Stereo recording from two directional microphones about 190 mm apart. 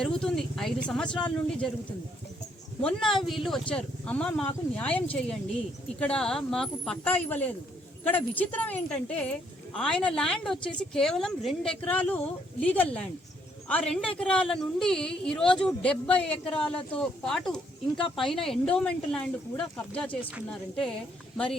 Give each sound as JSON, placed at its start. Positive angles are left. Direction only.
{"t": 0.0, "sound": "speech", "side_deg": 5}
{"t": 2.8, "sound": "speech", "side_deg": 0}